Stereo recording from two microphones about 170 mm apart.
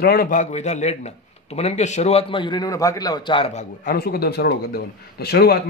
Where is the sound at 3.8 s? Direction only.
65° left (ahead or behind).